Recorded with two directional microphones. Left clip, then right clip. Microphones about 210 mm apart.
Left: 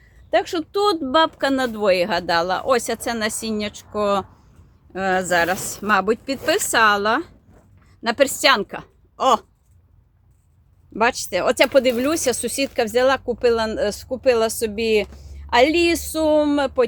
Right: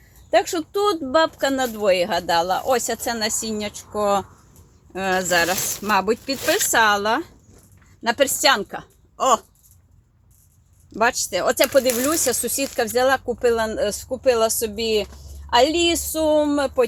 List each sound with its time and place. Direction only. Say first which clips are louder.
0.3 s speech: right 1 dB; 5° left (ahead or behind)
0.7 s a woman's voice: left 2 dB; 20° left (ahead or behind)
10.9 s speech: left 1 dB; 20° left (ahead or behind)